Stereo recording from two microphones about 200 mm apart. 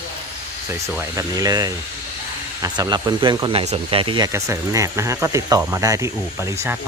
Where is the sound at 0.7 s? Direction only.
15° right (ahead or behind).